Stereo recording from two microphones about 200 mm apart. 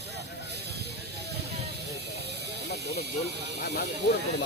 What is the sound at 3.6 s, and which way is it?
Speech, 55° left (ahead or behind).